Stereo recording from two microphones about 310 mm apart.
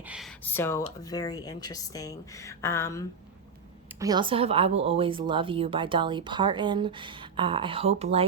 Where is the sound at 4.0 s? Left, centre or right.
Centre.